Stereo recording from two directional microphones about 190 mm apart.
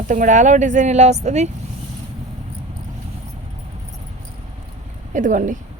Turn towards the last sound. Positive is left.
turn(degrees=-40)  # may be behind; listen again after turning